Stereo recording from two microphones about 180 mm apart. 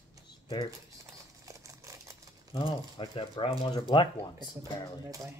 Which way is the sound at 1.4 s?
15° right (ahead or behind).